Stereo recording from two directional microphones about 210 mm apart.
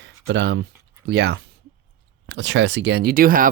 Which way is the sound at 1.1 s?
50° right (ahead or behind).